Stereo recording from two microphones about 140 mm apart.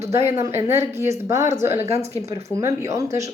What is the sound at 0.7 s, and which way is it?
Speech, 20° right (ahead or behind).